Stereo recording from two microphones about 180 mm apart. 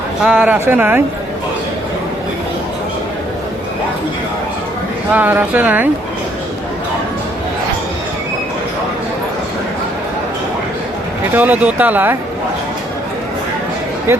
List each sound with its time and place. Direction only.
0.3 s speech: 5° right (ahead or behind)
5.1 s speech: 10° right (ahead or behind)
11.3 s speech: 10° right (ahead or behind)
14.1 s speech: 15° right (ahead or behind)